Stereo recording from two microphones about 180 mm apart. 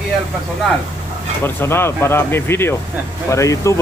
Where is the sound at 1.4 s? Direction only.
15° left (ahead or behind).